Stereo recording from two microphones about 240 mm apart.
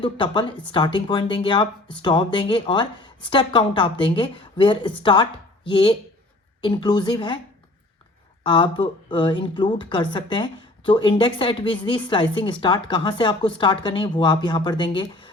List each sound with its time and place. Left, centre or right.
0.0 s a woman's voice: left
8.4 s a woman's voice: left